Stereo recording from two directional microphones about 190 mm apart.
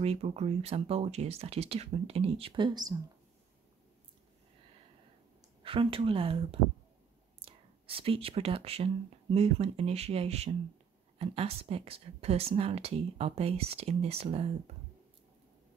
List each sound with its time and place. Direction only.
0.0 s speech: 30° right (ahead or behind)
5.6 s speech: 30° right (ahead or behind)